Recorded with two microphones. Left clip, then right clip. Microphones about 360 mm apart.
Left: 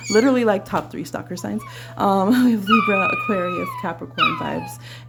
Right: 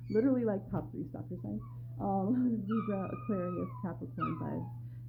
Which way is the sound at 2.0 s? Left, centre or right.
Left.